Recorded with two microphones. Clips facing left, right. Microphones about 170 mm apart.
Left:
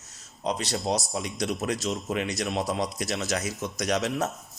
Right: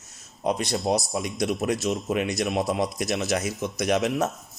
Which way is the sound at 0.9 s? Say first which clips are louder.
Right 3 dB; 10° right (ahead or behind).